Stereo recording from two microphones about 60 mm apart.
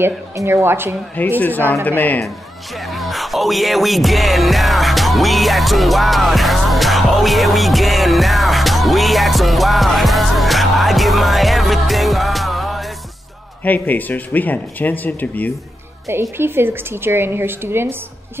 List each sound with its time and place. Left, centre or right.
0.5 s a woman's voice: right
1.4 s speech: left
2.8 s music: centre
13.7 s speech: left
16.1 s a woman's voice: right